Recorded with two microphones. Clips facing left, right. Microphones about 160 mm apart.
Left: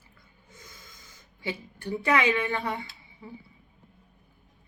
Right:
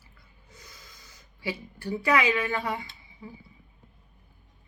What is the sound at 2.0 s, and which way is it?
Speech, 25° left (ahead or behind).